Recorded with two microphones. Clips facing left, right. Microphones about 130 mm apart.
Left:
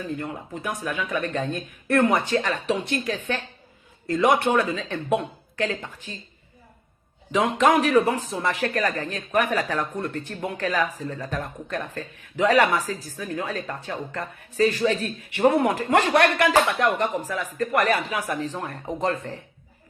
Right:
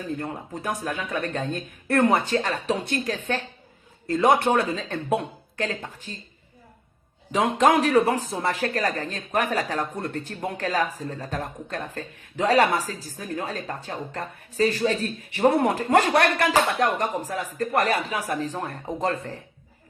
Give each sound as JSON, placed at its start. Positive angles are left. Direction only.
{"t": 0.0, "sound": "speech", "side_deg": -40}
{"t": 7.3, "sound": "speech", "side_deg": -35}